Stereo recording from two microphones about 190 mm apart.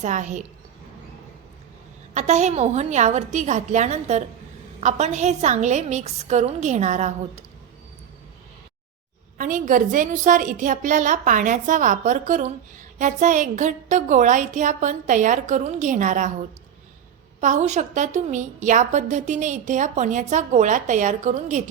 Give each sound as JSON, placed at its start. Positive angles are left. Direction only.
{"t": 0.0, "sound": "a woman's voice", "side_deg": -40}
{"t": 2.1, "sound": "a woman's voice", "side_deg": -40}
{"t": 9.4, "sound": "a woman's voice", "side_deg": -45}
{"t": 17.4, "sound": "a woman's voice", "side_deg": -40}